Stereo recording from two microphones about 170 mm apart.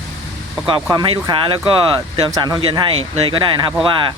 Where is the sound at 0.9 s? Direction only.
25° right (ahead or behind).